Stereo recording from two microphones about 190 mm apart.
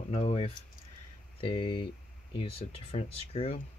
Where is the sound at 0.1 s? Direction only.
30° left (ahead or behind).